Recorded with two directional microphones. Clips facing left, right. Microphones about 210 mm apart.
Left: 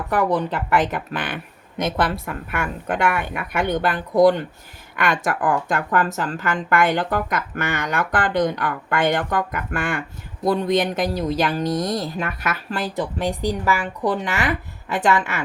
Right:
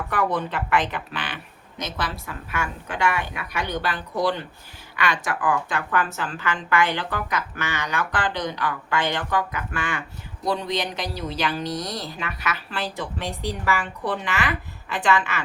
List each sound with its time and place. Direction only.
0.1 s a woman's voice: 35° left (ahead or behind)